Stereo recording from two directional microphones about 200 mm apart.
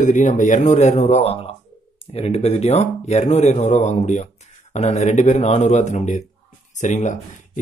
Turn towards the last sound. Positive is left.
turn(degrees=35)  # may be behind; listen again after turning